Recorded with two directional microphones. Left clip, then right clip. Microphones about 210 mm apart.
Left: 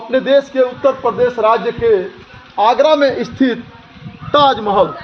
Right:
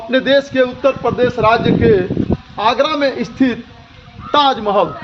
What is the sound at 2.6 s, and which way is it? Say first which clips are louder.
Speech: left 4 dB; 50° right (ahead or behind).